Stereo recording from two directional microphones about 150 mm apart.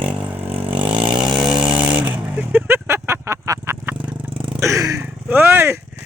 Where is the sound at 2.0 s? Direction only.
10° right (ahead or behind).